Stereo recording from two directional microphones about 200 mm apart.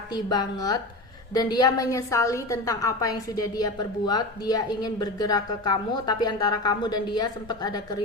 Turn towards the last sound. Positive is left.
turn(degrees=20)  # may be behind; listen again after turning